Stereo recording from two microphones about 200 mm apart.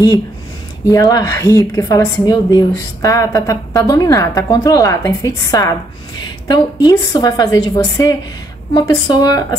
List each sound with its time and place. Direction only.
0.8 s a woman's voice: 20° left (ahead or behind)